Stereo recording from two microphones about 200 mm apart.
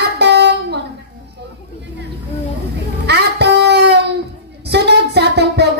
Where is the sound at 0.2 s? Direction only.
55° right (ahead or behind).